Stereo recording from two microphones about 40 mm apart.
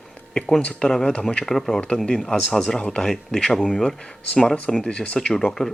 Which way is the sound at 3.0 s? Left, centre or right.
Centre.